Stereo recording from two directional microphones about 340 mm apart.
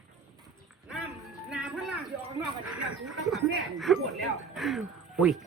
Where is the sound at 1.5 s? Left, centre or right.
Centre.